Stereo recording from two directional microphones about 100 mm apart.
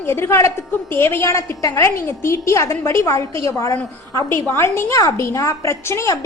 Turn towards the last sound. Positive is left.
turn(degrees=30)  # may be behind; listen again after turning